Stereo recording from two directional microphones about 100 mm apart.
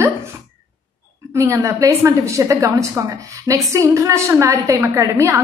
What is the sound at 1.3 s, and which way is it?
A woman's voice, 20° right (ahead or behind).